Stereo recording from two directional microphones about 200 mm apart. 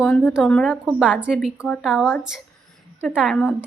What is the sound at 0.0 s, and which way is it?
Speech, 10° left (ahead or behind).